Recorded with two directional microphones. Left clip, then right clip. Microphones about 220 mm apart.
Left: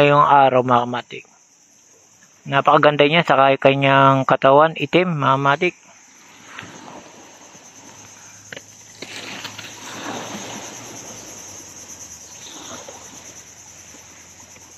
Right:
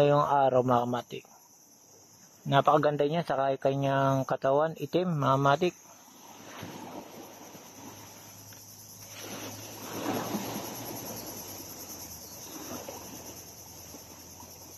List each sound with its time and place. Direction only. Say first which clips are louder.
0.0 s speech: left 11 dB; 10° left (ahead or behind)
2.5 s speech: left 10 dB; 10° left (ahead or behind)